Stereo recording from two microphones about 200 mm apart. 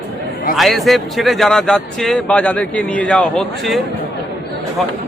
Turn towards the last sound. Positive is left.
turn(degrees=0)  # may be behind; listen again after turning